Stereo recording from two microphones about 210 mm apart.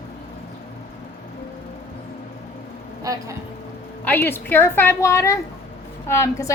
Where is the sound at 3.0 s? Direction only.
15° right (ahead or behind).